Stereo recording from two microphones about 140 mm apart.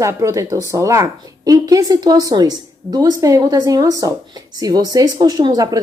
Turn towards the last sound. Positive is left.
turn(degrees=-25)  # may be behind; listen again after turning